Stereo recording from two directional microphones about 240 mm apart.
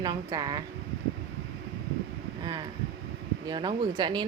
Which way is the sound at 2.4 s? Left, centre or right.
Centre.